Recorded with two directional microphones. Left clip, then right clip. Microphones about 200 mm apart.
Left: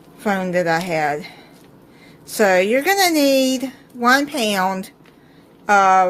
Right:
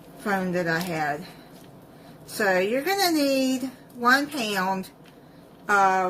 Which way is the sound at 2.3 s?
45° left (ahead or behind).